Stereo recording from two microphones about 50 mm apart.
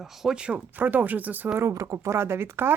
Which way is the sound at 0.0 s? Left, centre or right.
Centre.